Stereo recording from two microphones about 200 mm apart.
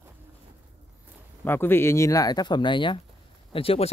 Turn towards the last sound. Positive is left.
turn(degrees=30)  # may be behind; listen again after turning